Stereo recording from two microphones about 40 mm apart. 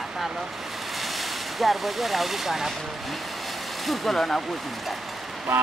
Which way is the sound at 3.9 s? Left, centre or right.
Centre.